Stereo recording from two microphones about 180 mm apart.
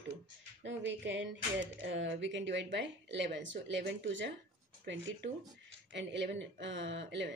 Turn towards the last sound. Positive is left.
turn(degrees=-80)